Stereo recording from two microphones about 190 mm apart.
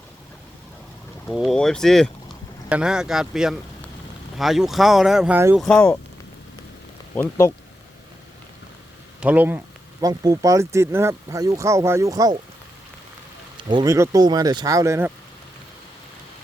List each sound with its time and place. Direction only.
1.3 s speech: centre (ahead or behind)
5.5 s speech: 5° left (ahead or behind)
7.2 s speech: 15° left (ahead or behind)
9.2 s speech: 10° right (ahead or behind)
13.6 s speech: 25° right (ahead or behind)